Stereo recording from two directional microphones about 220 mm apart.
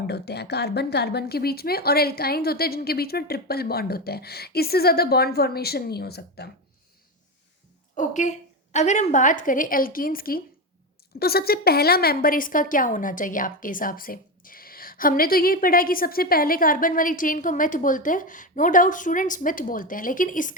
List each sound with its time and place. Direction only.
0.1 s speech: 50° left (ahead or behind)
7.9 s a woman's voice: 35° left (ahead or behind)